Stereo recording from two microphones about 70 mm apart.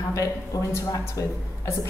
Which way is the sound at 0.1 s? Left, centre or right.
Left.